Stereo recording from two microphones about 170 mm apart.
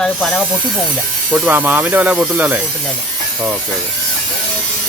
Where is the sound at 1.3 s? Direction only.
10° right (ahead or behind).